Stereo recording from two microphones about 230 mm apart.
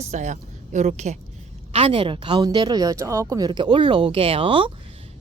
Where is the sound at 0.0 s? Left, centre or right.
Right.